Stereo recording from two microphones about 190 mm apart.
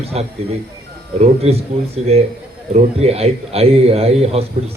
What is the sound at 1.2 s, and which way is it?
A man's voice, 30° right (ahead or behind).